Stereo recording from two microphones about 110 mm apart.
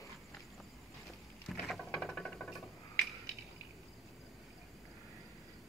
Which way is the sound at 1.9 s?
Centre (ahead or behind).